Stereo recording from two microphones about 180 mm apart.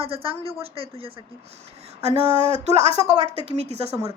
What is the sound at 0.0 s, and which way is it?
A woman's voice, 30° right (ahead or behind).